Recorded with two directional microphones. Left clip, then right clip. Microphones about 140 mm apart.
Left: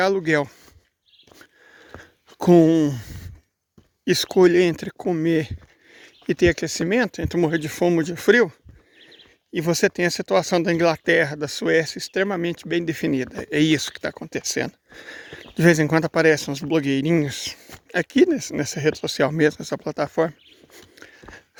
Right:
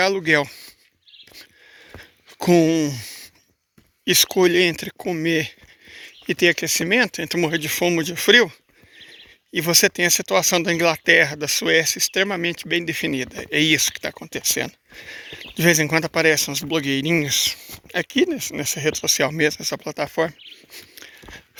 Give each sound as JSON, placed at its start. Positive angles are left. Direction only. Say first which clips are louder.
{"t": 0.0, "sound": "speech", "louder": "right 2 dB", "side_deg": 35}
{"t": 2.0, "sound": "a sound", "louder": "even", "side_deg": 45}
{"t": 4.0, "sound": "speech", "louder": "even", "side_deg": 45}
{"t": 20.7, "sound": "biting", "louder": "right 4 dB", "side_deg": 40}